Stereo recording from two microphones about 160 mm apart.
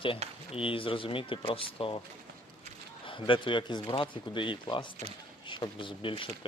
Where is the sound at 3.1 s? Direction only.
30° left (ahead or behind).